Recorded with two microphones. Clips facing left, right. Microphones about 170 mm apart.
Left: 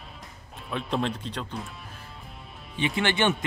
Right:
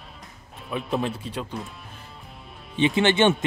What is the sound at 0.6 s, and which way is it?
Speech, 5° right (ahead or behind).